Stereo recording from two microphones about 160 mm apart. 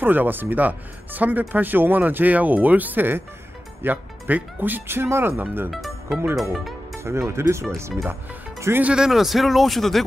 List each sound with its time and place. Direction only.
0.0 s speech: 10° right (ahead or behind)
5.7 s music: centre (ahead or behind)
7.0 s speech: 15° right (ahead or behind); by 10.0 s centre (ahead or behind)